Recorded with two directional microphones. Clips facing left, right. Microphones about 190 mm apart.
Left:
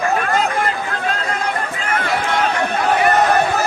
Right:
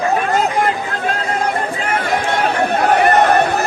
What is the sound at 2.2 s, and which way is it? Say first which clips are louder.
Run: right 2 dB; 45° right (ahead or behind).